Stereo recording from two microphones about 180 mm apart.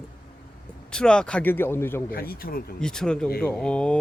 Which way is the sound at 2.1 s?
55° left (ahead or behind).